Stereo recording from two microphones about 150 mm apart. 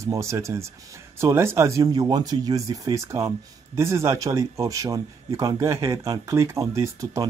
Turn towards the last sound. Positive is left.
turn(degrees=-20)  # may be behind; listen again after turning